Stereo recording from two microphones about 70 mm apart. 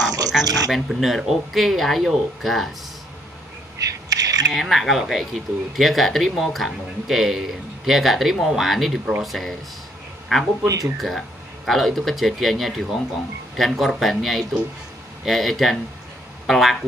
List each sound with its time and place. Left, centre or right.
0.7 s speech: centre
3.8 s coin: right
4.5 s speech: centre